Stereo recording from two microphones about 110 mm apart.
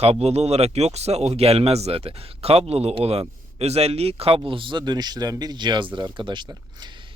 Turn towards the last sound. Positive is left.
turn(degrees=-45)  # may be behind; listen again after turning